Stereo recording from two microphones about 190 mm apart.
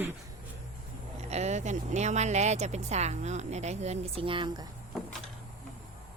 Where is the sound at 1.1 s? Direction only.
35° right (ahead or behind).